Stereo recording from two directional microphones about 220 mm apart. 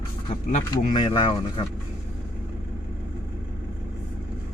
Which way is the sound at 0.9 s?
25° left (ahead or behind).